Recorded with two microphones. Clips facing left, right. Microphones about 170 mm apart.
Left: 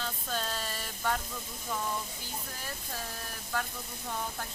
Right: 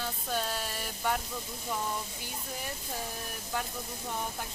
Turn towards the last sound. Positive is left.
turn(degrees=-20)  # may be behind; listen again after turning